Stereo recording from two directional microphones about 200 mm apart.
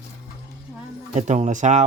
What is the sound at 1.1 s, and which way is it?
Speech, 35° right (ahead or behind).